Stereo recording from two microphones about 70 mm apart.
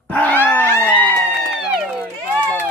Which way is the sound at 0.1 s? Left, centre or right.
Left.